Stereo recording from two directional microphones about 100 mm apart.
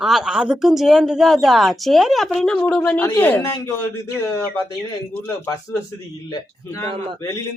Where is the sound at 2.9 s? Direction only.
20° left (ahead or behind).